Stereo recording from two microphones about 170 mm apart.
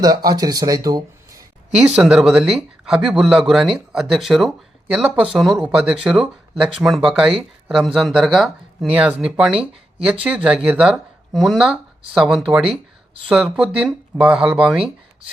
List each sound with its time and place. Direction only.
0.3 s speech: 20° right (ahead or behind)
1.9 s speech: 5° right (ahead or behind)